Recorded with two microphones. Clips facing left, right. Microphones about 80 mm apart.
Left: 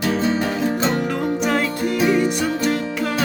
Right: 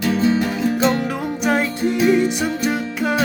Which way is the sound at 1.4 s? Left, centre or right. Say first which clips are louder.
Right 6 dB; centre.